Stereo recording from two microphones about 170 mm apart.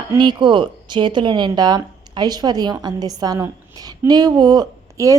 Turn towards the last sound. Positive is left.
turn(degrees=-20)  # may be behind; listen again after turning